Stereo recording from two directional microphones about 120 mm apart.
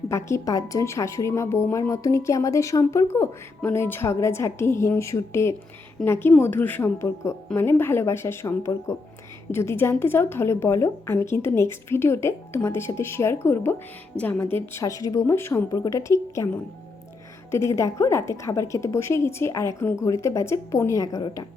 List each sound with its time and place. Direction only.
0.1 s a woman's voice: 25° left (ahead or behind)
17.5 s a woman's voice: 25° left (ahead or behind)